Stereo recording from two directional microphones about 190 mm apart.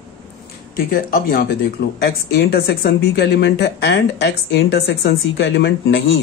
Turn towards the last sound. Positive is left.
turn(degrees=75)  # may be behind; listen again after turning